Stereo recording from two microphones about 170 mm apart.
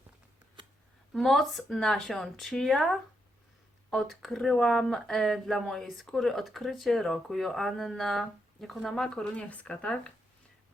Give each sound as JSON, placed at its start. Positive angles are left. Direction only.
{"t": 1.1, "sound": "speech", "side_deg": 0}